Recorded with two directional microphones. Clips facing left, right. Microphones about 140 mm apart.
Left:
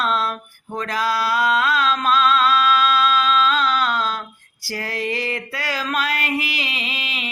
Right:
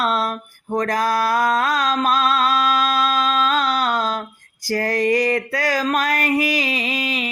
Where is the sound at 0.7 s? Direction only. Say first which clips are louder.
Right 4 dB; 45° right (ahead or behind).